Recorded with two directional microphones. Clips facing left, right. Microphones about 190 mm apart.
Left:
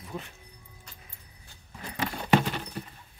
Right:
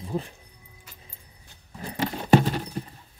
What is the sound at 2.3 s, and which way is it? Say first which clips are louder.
Clip-clop: right 5 dB; 35° right (ahead or behind).